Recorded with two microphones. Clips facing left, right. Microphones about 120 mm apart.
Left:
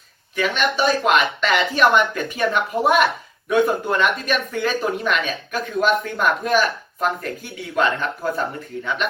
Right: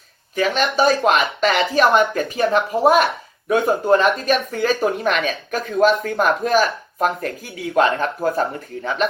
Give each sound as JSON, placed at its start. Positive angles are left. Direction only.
{"t": 0.3, "sound": "speech", "side_deg": -40}